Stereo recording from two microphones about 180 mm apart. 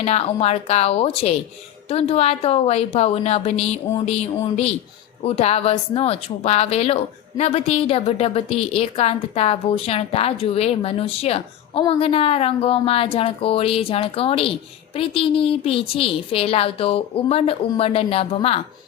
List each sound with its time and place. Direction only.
0.0 s a woman's voice: 35° left (ahead or behind)